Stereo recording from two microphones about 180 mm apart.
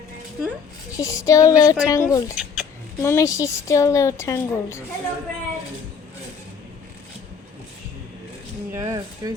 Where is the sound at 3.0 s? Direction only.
15° left (ahead or behind).